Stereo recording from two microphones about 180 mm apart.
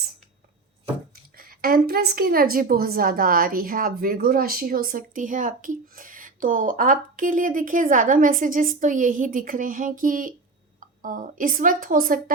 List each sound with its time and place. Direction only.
1.1 s a woman's voice: 55° right (ahead or behind)